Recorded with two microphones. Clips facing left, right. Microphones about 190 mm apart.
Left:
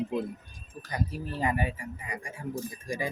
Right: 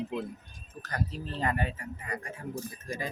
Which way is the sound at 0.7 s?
10° left (ahead or behind).